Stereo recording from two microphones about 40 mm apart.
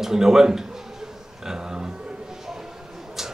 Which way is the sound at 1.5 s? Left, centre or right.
Centre.